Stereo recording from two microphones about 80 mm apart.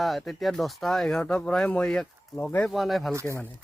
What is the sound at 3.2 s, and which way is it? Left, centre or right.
Speech, left.